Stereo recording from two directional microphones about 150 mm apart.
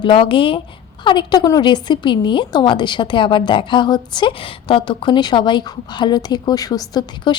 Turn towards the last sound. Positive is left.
turn(degrees=25)  # may be behind; listen again after turning